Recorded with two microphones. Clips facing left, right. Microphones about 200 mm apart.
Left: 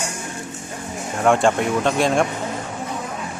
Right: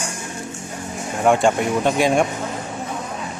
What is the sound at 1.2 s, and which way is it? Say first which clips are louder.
Speech: even; centre (ahead or behind).